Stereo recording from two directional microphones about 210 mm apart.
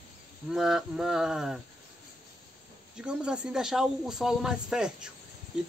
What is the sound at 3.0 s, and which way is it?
Speech, 5° right (ahead or behind).